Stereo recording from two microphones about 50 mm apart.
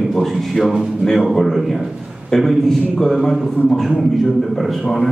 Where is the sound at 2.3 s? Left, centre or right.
Centre.